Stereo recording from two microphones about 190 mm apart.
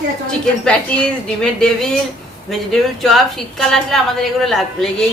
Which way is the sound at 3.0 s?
Centre (ahead or behind).